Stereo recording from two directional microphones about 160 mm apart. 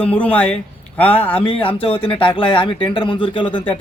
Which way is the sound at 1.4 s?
35° left (ahead or behind).